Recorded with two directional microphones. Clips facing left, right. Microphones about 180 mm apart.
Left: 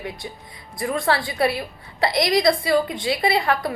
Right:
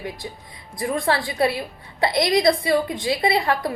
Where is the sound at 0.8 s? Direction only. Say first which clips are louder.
Even; 25° right (ahead or behind).